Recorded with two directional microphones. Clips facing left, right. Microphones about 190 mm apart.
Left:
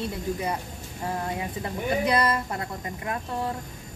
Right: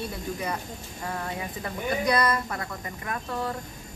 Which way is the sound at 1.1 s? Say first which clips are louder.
Left 3 dB; 25° left (ahead or behind).